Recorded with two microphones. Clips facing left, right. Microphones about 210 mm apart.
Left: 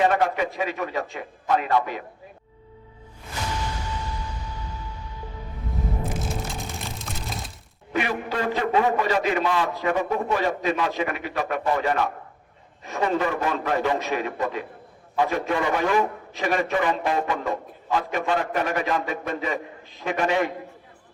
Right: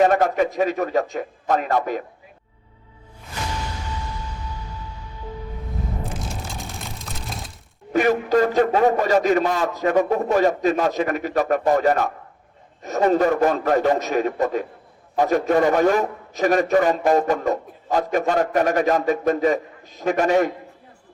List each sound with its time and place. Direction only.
0.0 s a man's voice: 45° right (ahead or behind)
6.1 s vehicle: centre (ahead or behind)
7.9 s a man's voice: 45° right (ahead or behind)